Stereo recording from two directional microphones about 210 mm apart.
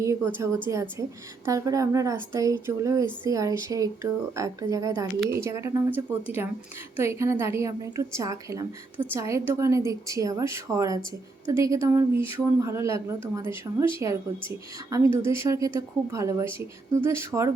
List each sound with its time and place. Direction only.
0.0 s a woman's voice: 15° right (ahead or behind)